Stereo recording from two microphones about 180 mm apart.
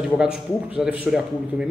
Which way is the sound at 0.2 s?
5° right (ahead or behind).